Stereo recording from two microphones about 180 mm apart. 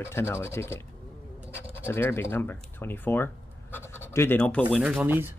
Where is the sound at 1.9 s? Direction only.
15° left (ahead or behind).